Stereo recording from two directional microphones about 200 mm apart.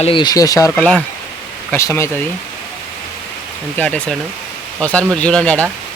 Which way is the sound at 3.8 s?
5° left (ahead or behind).